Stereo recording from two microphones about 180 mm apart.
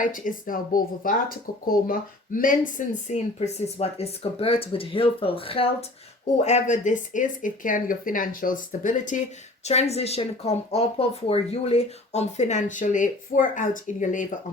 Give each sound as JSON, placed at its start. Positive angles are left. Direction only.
{"t": 0.0, "sound": "speech", "side_deg": 50}